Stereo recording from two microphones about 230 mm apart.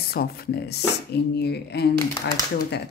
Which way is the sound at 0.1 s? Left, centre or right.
Left.